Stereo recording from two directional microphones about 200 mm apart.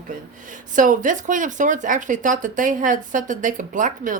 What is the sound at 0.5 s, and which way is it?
Speech, 40° right (ahead or behind).